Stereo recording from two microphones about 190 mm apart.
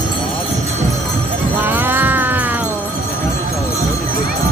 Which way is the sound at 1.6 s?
10° right (ahead or behind).